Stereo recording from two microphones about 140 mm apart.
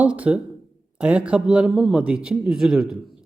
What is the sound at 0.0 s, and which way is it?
Speech, 10° right (ahead or behind).